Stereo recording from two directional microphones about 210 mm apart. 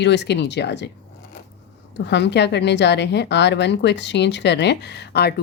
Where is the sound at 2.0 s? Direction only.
55° left (ahead or behind).